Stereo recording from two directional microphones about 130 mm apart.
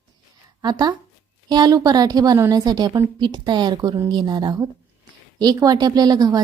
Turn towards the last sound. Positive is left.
turn(degrees=-30)  # may be behind; listen again after turning